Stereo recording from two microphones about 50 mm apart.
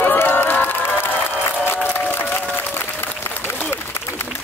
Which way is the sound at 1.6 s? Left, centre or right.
Left.